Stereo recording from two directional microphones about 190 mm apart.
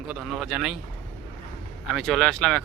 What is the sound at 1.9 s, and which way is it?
Speech, centre (ahead or behind).